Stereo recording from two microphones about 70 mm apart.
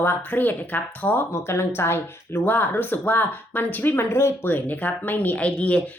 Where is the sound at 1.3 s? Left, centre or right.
Left; by 5.8 s centre.